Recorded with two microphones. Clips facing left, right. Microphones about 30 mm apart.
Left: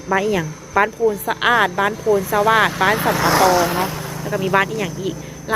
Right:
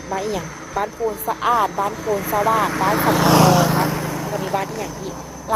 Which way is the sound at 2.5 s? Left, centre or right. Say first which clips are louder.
Left 3 dB; left.